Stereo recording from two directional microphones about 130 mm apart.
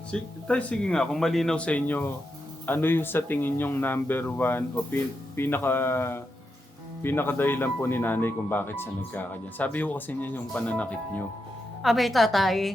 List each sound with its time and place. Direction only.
0.1 s speech: 10° left (ahead or behind)
11.8 s a woman's voice: centre (ahead or behind)